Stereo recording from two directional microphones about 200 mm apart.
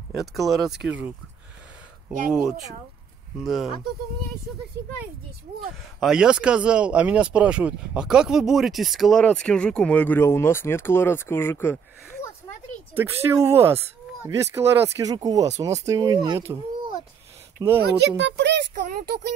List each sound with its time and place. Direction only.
0.1 s speech: centre (ahead or behind)
5.9 s speech: 5° right (ahead or behind)
12.9 s speech: 10° right (ahead or behind)
17.6 s speech: 15° right (ahead or behind)
17.9 s a child's voice: 60° right (ahead or behind)
18.8 s child singing: 45° right (ahead or behind)